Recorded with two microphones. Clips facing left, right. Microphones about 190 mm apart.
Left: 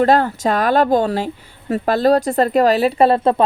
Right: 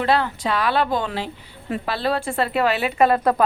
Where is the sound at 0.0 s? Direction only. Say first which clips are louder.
Left 6 dB; 45° left (ahead or behind).